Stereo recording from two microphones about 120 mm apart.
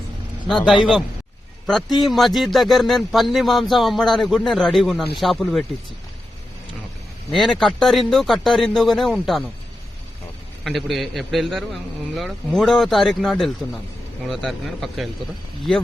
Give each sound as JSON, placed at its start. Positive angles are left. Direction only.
{"t": 0.4, "sound": "a man's voice", "side_deg": 5}
{"t": 2.0, "sound": "a man's voice", "side_deg": 0}
{"t": 7.3, "sound": "a man's voice", "side_deg": 0}
{"t": 10.6, "sound": "a man's voice", "side_deg": 0}